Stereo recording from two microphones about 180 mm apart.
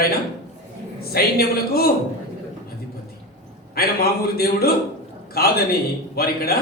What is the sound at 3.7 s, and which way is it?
A man's voice, 60° left (ahead or behind).